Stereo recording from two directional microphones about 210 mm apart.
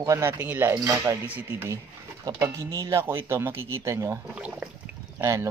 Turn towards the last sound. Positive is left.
turn(degrees=-15)  # may be behind; listen again after turning